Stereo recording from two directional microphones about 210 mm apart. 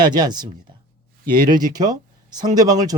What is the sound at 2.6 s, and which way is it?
Speech, 20° right (ahead or behind).